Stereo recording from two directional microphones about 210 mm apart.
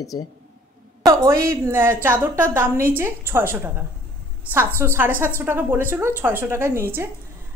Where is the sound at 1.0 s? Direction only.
15° right (ahead or behind).